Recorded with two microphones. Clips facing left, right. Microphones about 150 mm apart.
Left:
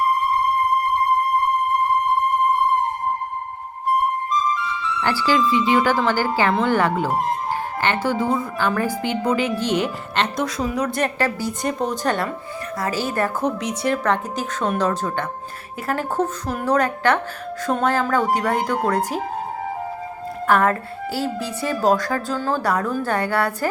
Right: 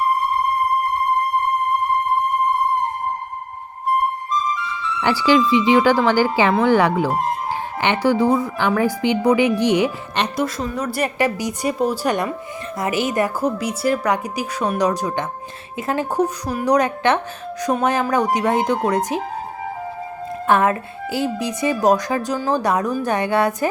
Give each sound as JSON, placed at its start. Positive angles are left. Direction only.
{"t": 5.0, "sound": "speech", "side_deg": -15}
{"t": 10.4, "sound": "speech", "side_deg": 0}
{"t": 20.5, "sound": "speech", "side_deg": -20}